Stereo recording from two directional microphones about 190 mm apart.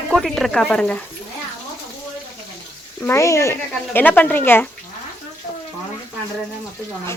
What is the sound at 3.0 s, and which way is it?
Speech, 15° left (ahead or behind).